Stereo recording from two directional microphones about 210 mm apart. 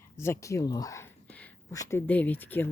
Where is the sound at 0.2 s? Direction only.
15° left (ahead or behind).